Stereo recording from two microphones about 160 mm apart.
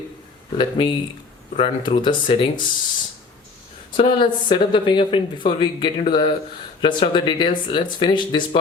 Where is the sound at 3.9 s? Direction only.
30° left (ahead or behind).